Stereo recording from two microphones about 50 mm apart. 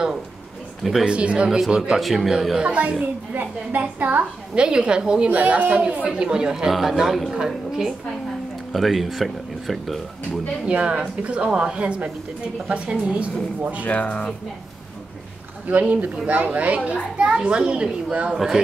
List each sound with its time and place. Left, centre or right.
1.0 s a woman's voice: right
2.0 s speech: centre
2.6 s a woman's voice: right
3.3 s a woman's voice: right
4.6 s a woman's voice: centre
10.6 s a woman's voice: right
13.8 s speech: left
15.7 s a woman's voice: right
18.3 s a child's voice: centre